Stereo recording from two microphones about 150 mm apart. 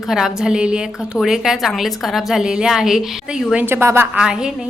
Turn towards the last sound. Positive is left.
turn(degrees=-5)  # may be behind; listen again after turning